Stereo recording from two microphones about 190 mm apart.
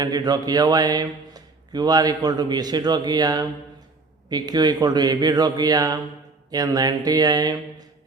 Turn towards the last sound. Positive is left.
turn(degrees=-20)  # may be behind; listen again after turning